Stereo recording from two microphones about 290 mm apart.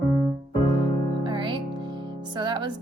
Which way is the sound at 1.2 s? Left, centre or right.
Centre.